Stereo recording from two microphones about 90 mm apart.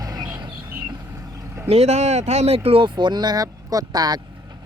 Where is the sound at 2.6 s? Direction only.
85° right; by 4.2 s 45° right (ahead or behind).